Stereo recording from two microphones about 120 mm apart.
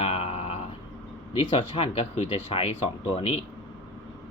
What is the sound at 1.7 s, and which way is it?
Speech, 60° left (ahead or behind).